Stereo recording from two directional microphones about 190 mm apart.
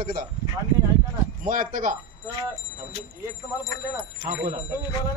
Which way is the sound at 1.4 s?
45° right (ahead or behind).